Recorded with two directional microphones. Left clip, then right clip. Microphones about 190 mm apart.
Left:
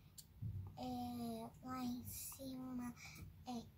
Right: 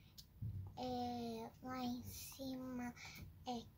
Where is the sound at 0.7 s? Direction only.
35° right (ahead or behind).